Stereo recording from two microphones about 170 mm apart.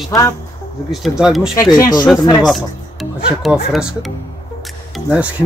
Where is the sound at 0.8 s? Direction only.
Centre (ahead or behind).